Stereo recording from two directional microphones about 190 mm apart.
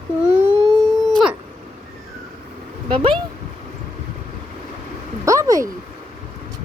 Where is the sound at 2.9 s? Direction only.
25° right (ahead or behind).